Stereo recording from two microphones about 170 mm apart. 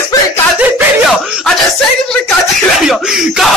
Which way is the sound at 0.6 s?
5° right (ahead or behind).